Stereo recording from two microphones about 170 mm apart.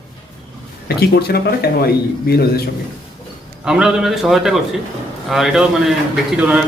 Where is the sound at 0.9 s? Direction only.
70° left (ahead or behind).